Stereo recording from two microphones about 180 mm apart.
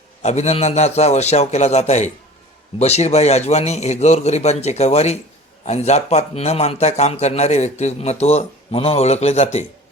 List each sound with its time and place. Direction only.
0.2 s a man's voice: 40° left (ahead or behind)